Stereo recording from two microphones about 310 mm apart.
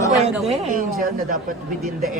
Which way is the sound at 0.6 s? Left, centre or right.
Right.